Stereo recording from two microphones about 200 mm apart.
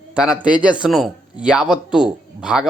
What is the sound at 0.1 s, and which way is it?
A man's voice, 5° right (ahead or behind).